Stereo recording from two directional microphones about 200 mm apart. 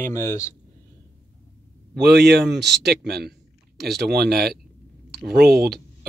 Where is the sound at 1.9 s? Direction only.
60° right (ahead or behind).